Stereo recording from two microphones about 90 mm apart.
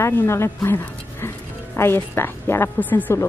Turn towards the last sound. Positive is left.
turn(degrees=20)  # may be behind; listen again after turning